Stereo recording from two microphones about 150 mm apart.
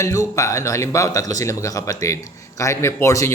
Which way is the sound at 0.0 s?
20° left (ahead or behind).